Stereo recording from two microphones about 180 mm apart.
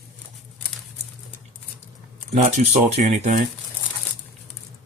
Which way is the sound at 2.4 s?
40° right (ahead or behind).